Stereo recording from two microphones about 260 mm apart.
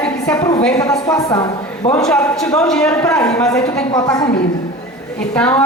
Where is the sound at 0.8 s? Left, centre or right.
Centre.